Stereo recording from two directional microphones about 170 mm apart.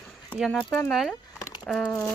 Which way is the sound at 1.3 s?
20° left (ahead or behind).